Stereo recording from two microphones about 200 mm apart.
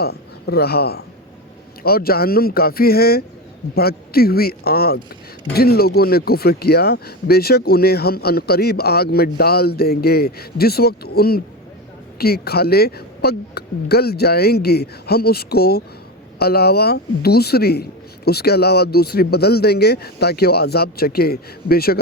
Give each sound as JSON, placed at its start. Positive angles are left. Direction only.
{"t": 0.0, "sound": "speech", "side_deg": 50}